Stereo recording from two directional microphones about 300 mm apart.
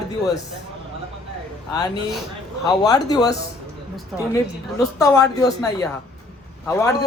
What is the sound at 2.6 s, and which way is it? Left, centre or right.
Speech, centre.